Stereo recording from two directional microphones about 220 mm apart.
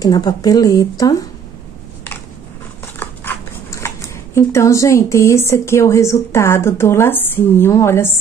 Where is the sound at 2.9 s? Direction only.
10° left (ahead or behind).